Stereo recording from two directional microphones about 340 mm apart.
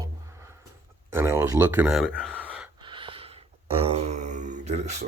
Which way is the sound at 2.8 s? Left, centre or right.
Centre.